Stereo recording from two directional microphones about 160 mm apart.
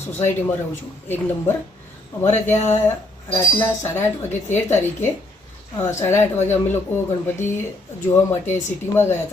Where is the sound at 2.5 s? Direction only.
45° left (ahead or behind).